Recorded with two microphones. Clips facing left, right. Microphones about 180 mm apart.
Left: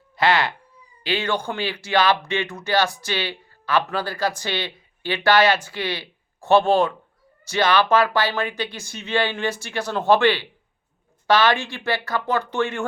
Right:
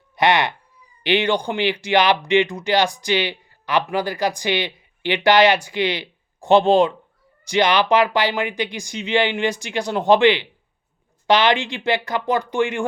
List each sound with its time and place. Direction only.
0.2 s speech: 20° right (ahead or behind)